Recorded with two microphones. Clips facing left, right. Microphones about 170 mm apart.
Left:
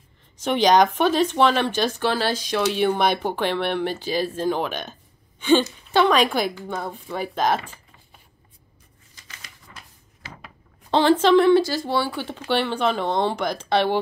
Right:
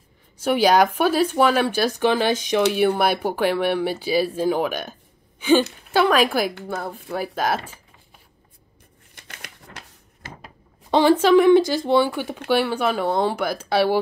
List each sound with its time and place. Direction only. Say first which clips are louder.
0.4 s speech: even; 10° right (ahead or behind)
5.9 s speech: even; 5° right (ahead or behind)
9.1 s typewriter: right 5 dB; 60° right (ahead or behind)
10.9 s speech: right 1 dB; 10° right (ahead or behind)